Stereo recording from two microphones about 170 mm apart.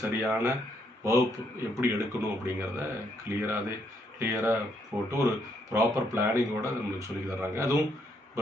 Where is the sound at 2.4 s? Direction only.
15° right (ahead or behind).